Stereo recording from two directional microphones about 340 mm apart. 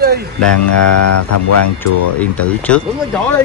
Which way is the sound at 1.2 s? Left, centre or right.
Left.